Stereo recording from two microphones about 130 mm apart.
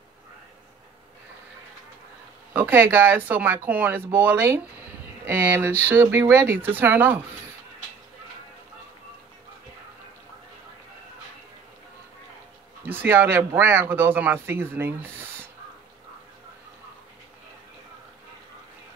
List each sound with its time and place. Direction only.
2.5 s speech: 15° right (ahead or behind)
12.8 s speech: 15° right (ahead or behind)